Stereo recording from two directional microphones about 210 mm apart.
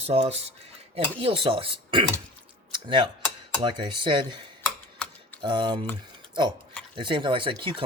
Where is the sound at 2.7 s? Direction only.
25° right (ahead or behind).